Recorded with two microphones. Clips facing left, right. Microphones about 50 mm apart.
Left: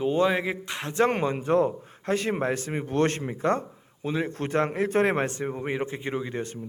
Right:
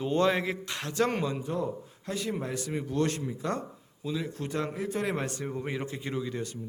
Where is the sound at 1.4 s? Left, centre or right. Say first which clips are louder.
Left 9 dB; left.